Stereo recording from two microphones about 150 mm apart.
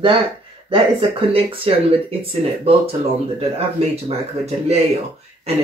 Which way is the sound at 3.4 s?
40° right (ahead or behind).